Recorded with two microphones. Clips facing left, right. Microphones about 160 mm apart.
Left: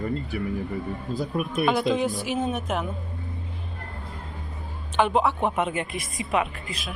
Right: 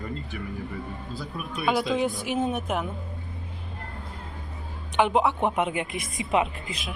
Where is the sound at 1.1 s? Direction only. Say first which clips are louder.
Left 9 dB; 45° left (ahead or behind).